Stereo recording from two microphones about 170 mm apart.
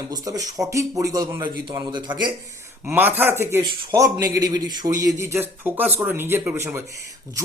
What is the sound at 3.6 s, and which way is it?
Speech, 25° right (ahead or behind).